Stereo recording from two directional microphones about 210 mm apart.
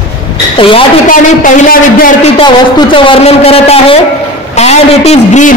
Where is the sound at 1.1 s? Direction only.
40° left (ahead or behind).